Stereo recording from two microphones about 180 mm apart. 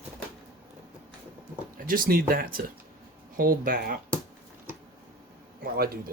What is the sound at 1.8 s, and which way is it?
Speech, 50° right (ahead or behind).